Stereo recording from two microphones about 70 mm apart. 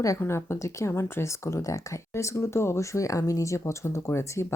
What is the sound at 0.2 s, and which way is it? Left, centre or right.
Speech, left.